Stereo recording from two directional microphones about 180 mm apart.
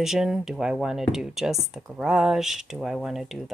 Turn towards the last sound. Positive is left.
turn(degrees=0)  # may be behind; listen again after turning